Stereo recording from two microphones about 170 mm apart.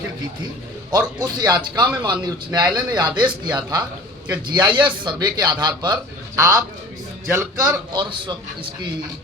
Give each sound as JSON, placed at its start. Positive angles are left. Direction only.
{"t": 0.9, "sound": "a man's voice", "side_deg": -25}
{"t": 7.9, "sound": "a man's voice", "side_deg": -25}